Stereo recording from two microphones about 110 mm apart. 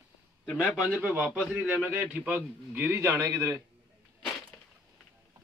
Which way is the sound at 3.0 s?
35° right (ahead or behind).